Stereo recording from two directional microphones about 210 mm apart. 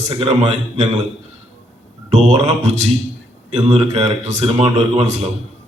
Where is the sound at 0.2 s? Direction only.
30° right (ahead or behind).